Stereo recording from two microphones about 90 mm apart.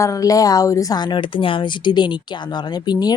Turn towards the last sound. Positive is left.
turn(degrees=50)  # may be behind; listen again after turning